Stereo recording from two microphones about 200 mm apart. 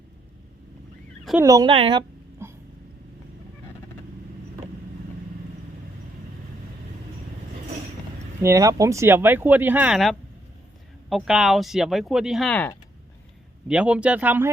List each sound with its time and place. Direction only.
1.4 s speech: 15° right (ahead or behind)
1.7 s a sound: 25° right (ahead or behind)
8.4 s speech: 15° right (ahead or behind); by 12.7 s 5° left (ahead or behind)
13.7 s speech: 5° right (ahead or behind)